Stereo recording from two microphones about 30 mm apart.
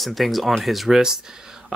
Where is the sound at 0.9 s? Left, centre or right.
Centre.